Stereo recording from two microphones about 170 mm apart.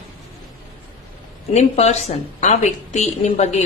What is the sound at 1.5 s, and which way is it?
A woman's voice, 40° left (ahead or behind).